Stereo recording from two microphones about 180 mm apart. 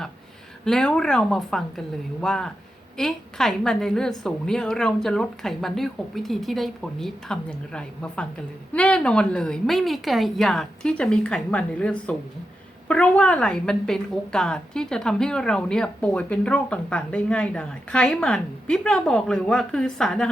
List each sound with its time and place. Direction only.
0.6 s a woman's voice: 5° left (ahead or behind)